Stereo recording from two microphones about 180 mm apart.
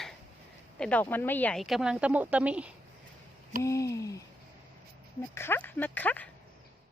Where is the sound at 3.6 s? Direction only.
15° left (ahead or behind).